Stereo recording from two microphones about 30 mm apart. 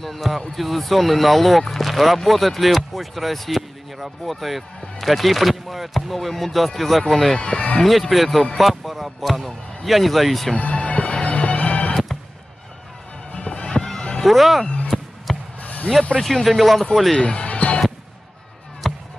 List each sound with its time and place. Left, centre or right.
0.0 s speech: centre
7.3 s speech: left
7.8 s speech: centre
10.5 s music: left
13.3 s music: left
14.2 s speech: centre
14.9 s basketball bounce: centre
15.6 s a sound: left
16.4 s speech: centre
17.2 s speech: left
17.5 s music: left
18.8 s a sound: centre